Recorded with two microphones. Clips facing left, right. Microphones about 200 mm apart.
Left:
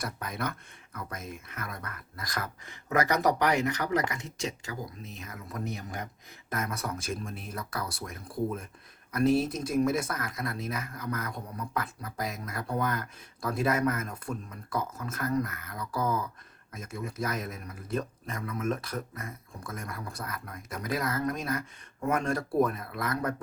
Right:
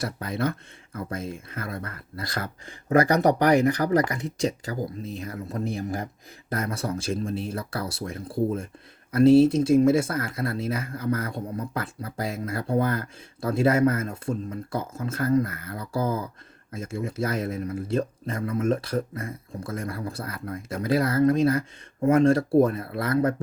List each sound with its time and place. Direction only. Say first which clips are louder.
0.0 s speech: right 7 dB; 30° right (ahead or behind)